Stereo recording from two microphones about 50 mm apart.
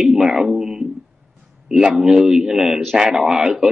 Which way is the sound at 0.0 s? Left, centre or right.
Centre.